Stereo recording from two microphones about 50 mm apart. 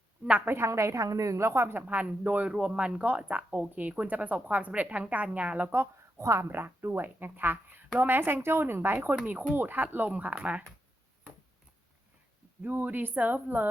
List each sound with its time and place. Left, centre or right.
0.4 s a woman's voice: right
0.7 s a woman's voice: right
1.9 s speech: right
2.5 s speech: centre
6.1 s speech: right
6.5 s speech: right
10.1 s speech: right
12.6 s speech: right